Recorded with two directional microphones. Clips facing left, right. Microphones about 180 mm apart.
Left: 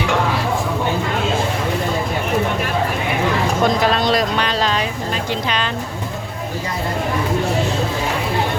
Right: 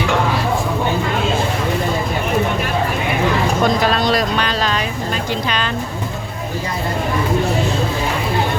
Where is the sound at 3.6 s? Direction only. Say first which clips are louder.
Left 1 dB; 20° left (ahead or behind).